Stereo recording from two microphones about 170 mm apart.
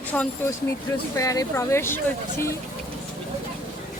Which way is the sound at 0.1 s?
10° left (ahead or behind).